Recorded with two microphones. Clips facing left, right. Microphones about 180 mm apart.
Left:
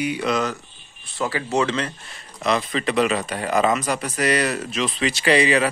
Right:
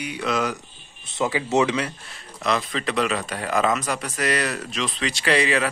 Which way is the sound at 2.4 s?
Centre (ahead or behind).